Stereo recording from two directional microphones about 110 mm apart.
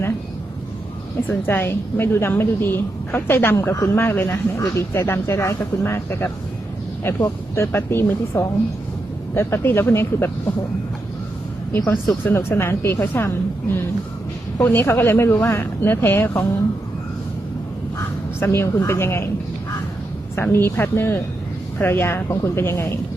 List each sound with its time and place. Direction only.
1.3 s a woman's voice: 20° left (ahead or behind)
12.2 s a woman's voice: 20° left (ahead or behind)
17.9 s speech: 25° left (ahead or behind)
20.3 s a woman's voice: 20° left (ahead or behind)